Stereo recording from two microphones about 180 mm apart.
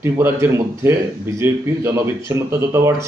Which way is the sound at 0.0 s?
15° right (ahead or behind).